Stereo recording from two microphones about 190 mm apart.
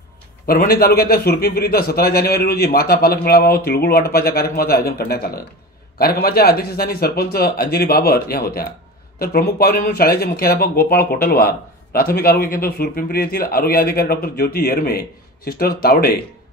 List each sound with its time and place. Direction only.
0.5 s speech: 55° left (ahead or behind)